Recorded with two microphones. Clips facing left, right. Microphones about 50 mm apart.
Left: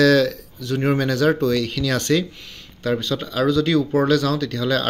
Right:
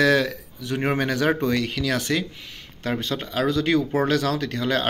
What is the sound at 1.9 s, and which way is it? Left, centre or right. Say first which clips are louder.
Speech: left 6 dB; centre.